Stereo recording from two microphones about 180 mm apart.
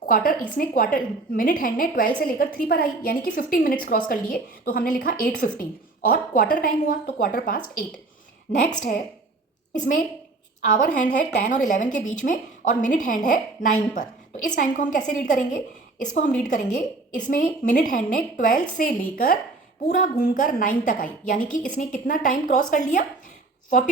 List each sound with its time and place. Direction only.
0.0 s a woman's voice: 50° left (ahead or behind)
9.7 s a woman's voice: 45° left (ahead or behind)